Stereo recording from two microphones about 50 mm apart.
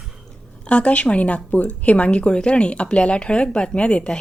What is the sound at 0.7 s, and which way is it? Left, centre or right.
A woman's voice, left.